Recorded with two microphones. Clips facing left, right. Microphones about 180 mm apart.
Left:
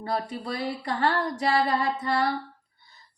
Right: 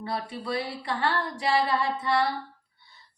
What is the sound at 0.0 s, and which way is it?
A woman's voice, 45° left (ahead or behind).